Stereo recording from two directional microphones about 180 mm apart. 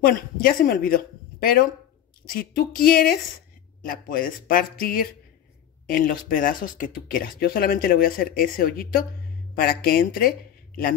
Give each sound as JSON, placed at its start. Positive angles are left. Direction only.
{"t": 0.0, "sound": "speech", "side_deg": 55}
{"t": 2.3, "sound": "a sound", "side_deg": 55}
{"t": 3.8, "sound": "speech", "side_deg": 50}